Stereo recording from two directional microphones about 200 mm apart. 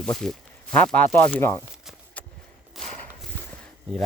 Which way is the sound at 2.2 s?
5° left (ahead or behind).